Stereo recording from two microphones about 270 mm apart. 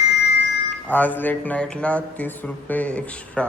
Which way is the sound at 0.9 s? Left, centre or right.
Centre.